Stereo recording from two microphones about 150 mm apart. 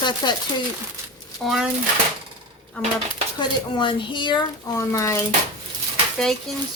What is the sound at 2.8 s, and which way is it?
Speech, 5° left (ahead or behind).